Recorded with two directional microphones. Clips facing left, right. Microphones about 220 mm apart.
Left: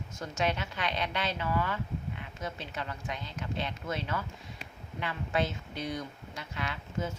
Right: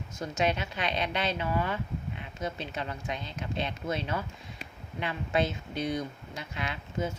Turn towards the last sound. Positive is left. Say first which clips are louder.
# right 2 dB
turn(degrees=-15)  # may be behind; listen again after turning